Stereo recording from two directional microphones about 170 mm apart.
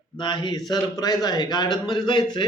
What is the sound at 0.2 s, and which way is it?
A man's voice, 25° left (ahead or behind).